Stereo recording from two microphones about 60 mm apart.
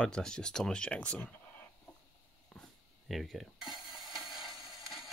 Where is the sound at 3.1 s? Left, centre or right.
Centre.